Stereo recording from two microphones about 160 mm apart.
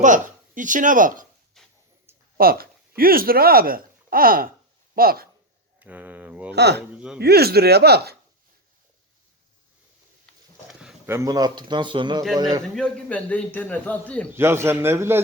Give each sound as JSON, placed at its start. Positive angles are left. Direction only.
{"t": 0.0, "sound": "speech", "side_deg": -55}
{"t": 1.6, "sound": "a sound", "side_deg": 0}
{"t": 2.1, "sound": "a sound", "side_deg": -15}
{"t": 2.4, "sound": "speech", "side_deg": -70}
{"t": 5.8, "sound": "a man's voice", "side_deg": -10}
{"t": 6.5, "sound": "speech", "side_deg": -90}
{"t": 6.9, "sound": "speech", "side_deg": -5}
{"t": 7.2, "sound": "speech", "side_deg": -80}
{"t": 10.7, "sound": "a sound", "side_deg": -5}
{"t": 11.1, "sound": "speech", "side_deg": -20}
{"t": 12.6, "sound": "a man's voice", "side_deg": 5}
{"t": 14.3, "sound": "a man's voice", "side_deg": -15}